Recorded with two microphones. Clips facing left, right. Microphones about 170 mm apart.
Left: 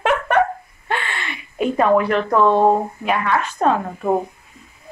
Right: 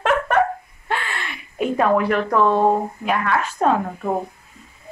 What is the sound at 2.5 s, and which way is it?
Speech, 30° left (ahead or behind).